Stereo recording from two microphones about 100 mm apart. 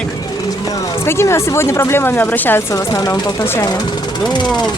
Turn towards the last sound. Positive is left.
turn(degrees=45)  # may be behind; listen again after turning